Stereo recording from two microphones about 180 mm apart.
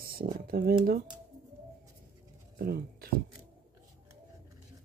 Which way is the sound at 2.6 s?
55° right (ahead or behind).